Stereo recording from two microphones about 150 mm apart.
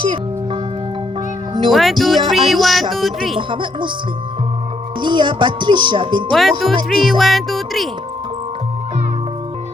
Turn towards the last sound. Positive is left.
turn(degrees=0)  # may be behind; listen again after turning